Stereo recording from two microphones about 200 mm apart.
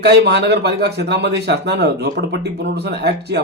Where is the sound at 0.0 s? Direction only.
55° right (ahead or behind).